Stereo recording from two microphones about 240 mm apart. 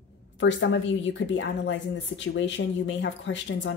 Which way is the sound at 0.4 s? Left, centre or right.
Left.